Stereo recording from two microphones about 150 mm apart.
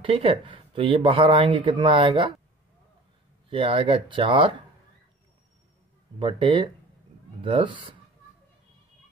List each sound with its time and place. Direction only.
0.0 s speech: 35° right (ahead or behind)
3.4 s speech: 35° right (ahead or behind)
6.1 s speech: 35° right (ahead or behind)